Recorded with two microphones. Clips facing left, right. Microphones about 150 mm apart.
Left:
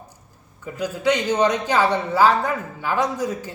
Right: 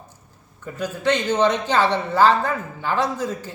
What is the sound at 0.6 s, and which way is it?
A man's voice, 10° left (ahead or behind).